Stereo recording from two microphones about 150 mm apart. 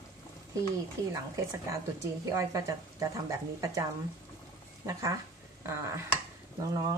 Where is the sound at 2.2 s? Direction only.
20° right (ahead or behind).